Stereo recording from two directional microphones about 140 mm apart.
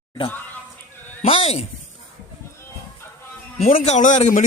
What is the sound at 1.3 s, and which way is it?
Speech, 45° left (ahead or behind).